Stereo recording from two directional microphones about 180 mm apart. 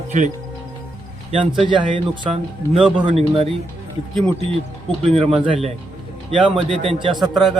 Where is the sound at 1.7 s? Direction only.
25° right (ahead or behind).